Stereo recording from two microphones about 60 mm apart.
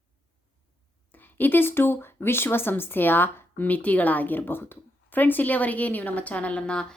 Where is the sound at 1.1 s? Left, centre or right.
Left.